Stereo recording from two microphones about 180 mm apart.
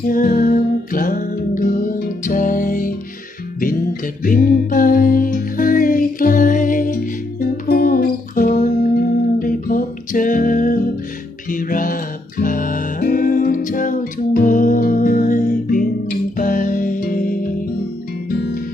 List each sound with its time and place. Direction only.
0.0 s music: 50° left (ahead or behind)